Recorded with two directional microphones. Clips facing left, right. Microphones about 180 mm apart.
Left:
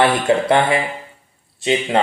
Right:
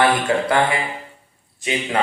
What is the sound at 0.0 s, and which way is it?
Speech, 25° left (ahead or behind).